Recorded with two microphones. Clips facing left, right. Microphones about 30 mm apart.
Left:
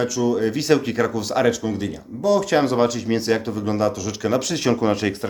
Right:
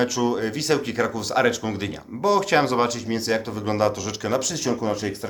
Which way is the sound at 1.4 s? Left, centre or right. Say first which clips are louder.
Left 2 dB; centre.